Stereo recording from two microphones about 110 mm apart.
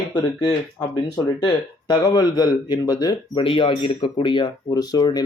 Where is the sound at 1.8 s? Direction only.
40° left (ahead or behind); by 4.2 s 60° left (ahead or behind).